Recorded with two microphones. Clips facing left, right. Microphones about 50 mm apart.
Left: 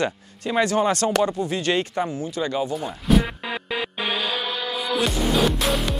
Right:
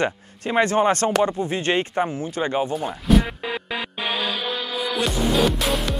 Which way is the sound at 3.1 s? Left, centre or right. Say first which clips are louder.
Right 1 dB; centre.